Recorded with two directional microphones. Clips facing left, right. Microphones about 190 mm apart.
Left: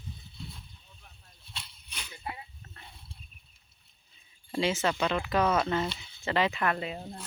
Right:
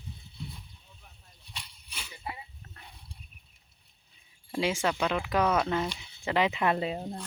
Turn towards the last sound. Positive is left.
turn(degrees=-25)  # may be behind; listen again after turning